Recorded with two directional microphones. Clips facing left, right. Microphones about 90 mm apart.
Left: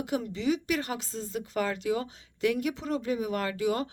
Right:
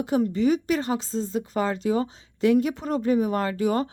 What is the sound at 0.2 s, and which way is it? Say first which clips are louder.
Speech: right 8 dB; 45° right (ahead or behind).